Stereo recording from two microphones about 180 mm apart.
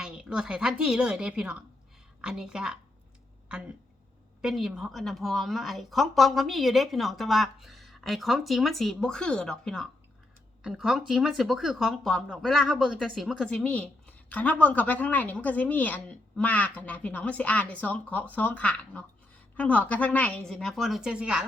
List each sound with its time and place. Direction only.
0.0 s a woman's voice: 5° right (ahead or behind)
4.4 s a woman's voice: centre (ahead or behind)